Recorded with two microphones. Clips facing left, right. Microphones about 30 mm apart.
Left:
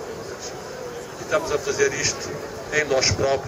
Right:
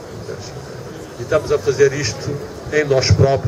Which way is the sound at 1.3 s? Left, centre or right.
Centre.